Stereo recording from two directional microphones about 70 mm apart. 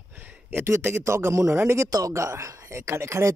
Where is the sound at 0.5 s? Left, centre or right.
Right.